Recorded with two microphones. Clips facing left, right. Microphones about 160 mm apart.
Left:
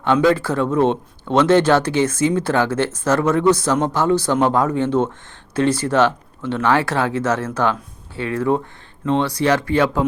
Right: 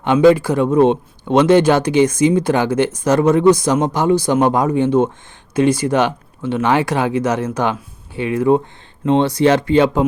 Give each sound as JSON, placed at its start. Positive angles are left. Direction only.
{"t": 0.0, "sound": "speech", "side_deg": -15}